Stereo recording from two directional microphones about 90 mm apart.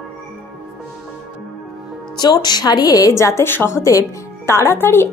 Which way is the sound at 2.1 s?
50° left (ahead or behind).